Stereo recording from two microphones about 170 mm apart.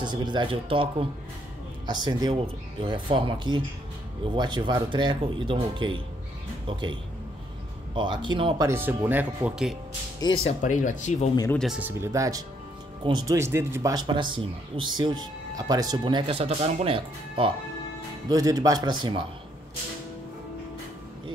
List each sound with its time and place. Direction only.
0.0 s speech: 25° right (ahead or behind)
8.6 s speech: 15° right (ahead or behind)
10.4 s speech: 45° left (ahead or behind)
11.5 s speech: centre (ahead or behind)
12.0 s speech: 20° right (ahead or behind)
13.4 s speech: 15° right (ahead or behind); by 17.5 s 30° right (ahead or behind)
18.3 s speech: 20° right (ahead or behind)